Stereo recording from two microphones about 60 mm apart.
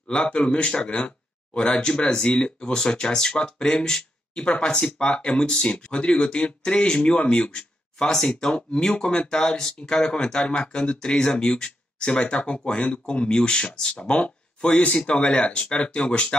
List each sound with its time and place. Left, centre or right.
0.1 s speech: centre